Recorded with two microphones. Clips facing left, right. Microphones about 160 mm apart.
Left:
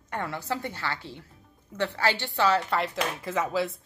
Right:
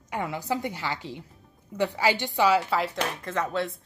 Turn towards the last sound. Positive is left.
turn(degrees=5)  # may be behind; listen again after turning